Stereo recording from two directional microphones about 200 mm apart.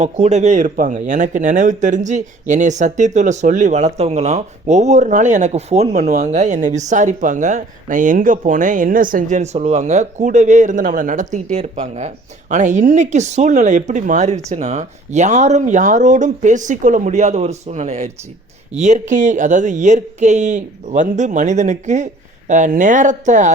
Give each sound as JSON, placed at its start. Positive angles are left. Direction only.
{"t": 0.0, "sound": "speech", "side_deg": -35}